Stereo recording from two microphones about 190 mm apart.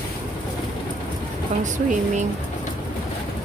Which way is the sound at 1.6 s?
40° right (ahead or behind).